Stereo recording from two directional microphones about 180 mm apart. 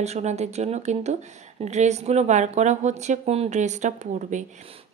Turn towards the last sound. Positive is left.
turn(degrees=-40)  # may be behind; listen again after turning